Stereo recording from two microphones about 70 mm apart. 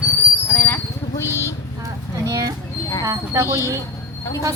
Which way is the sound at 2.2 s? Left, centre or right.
Right.